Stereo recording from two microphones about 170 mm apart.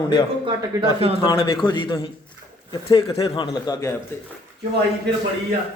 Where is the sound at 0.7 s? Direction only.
20° right (ahead or behind).